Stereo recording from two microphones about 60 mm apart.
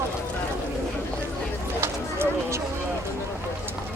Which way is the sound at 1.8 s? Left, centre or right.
Right.